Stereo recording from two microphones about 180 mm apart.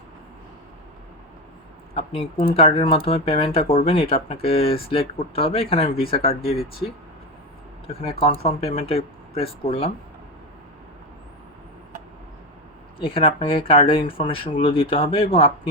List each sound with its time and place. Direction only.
2.6 s speech: 30° left (ahead or behind)
7.9 s speech: 30° left (ahead or behind)
13.0 s speech: 30° left (ahead or behind)